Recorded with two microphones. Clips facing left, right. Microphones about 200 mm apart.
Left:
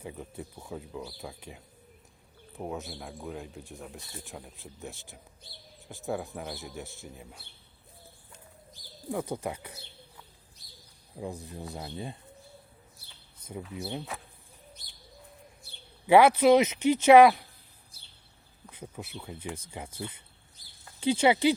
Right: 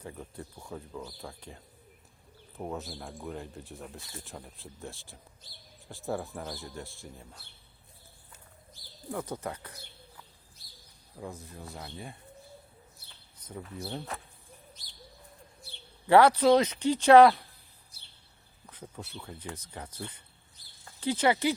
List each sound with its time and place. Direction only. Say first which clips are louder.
0.0 s speech: left 2 dB; 10° left (ahead or behind)
6.0 s speech: left 1 dB; centre (ahead or behind)
8.7 s bird: left 3 dB; 25° left (ahead or behind)
9.2 s speech: left 3 dB; 10° left (ahead or behind)
11.4 s speech: left 4 dB; 20° left (ahead or behind)
13.5 s speech: left 2 dB; 10° left (ahead or behind)
16.0 s speech: left 1 dB; 10° left (ahead or behind)
16.8 s speech: even; 20° left (ahead or behind)
18.8 s speech: left 2 dB; 10° left (ahead or behind)